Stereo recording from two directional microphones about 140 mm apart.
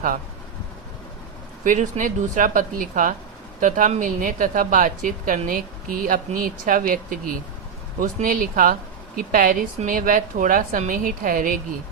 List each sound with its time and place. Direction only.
1.6 s a woman's voice: 65° right (ahead or behind)